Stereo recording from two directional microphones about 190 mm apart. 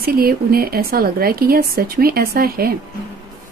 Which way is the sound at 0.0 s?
50° right (ahead or behind).